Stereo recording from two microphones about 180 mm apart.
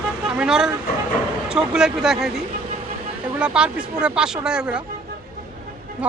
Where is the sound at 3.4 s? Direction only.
5° right (ahead or behind).